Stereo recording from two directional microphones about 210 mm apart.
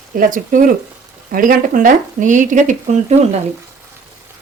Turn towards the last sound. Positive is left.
turn(degrees=-35)  # may be behind; listen again after turning